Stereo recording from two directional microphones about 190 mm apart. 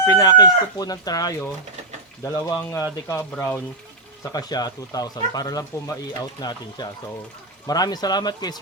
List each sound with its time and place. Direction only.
0.0 s speech: 20° left (ahead or behind)